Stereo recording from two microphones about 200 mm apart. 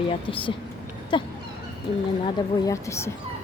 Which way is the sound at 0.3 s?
25° left (ahead or behind).